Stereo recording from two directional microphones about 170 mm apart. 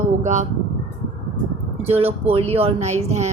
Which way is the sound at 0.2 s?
45° right (ahead or behind).